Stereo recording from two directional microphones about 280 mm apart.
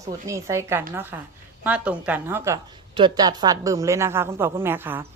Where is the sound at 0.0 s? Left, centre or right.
Centre.